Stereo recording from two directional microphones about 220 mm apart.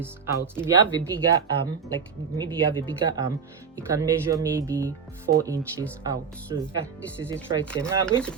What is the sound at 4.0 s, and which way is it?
Speech, 15° right (ahead or behind).